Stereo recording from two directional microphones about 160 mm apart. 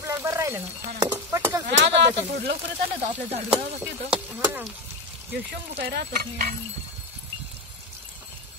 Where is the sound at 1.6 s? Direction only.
45° right (ahead or behind).